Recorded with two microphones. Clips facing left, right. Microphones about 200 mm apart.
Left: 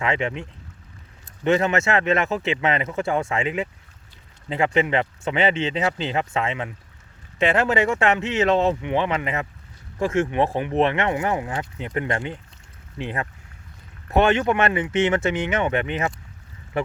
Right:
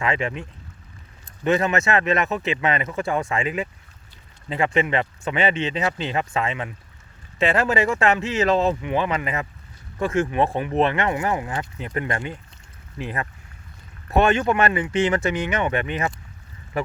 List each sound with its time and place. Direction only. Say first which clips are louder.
0.0 s speech: even; 20° left (ahead or behind)
1.5 s speech: left 1 dB; 20° left (ahead or behind)